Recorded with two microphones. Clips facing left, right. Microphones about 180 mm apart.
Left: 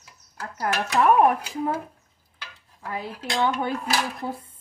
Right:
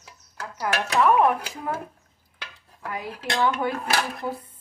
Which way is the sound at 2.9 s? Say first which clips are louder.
Even; 25° left (ahead or behind).